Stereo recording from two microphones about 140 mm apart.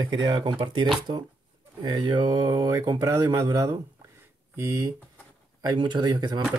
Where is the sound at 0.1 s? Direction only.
30° right (ahead or behind).